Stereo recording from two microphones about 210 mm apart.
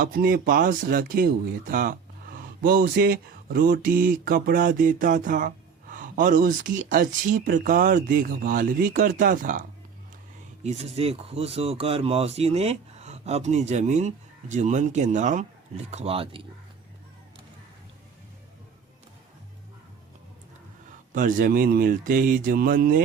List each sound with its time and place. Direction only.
0.0 s speech: 45° right (ahead or behind); by 16.5 s 25° right (ahead or behind)
21.1 s speech: 40° right (ahead or behind)